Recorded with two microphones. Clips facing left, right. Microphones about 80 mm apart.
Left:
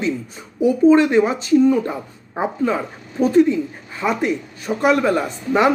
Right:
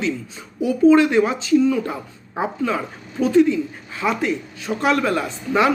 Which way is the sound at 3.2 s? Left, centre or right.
Left.